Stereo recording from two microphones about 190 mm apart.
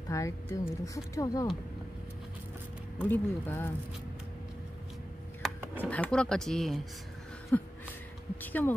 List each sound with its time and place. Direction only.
0.1 s speech: 15° left (ahead or behind)
3.1 s speech: 10° left (ahead or behind)
5.4 s speech: 5° left (ahead or behind)
7.5 s a sound: 10° left (ahead or behind)
8.4 s speech: 10° left (ahead or behind)